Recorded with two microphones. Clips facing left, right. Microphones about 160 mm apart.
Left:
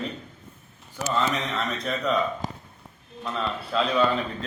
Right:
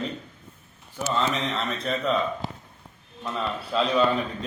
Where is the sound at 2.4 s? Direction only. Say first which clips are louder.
Left 1 dB; 45° left (ahead or behind).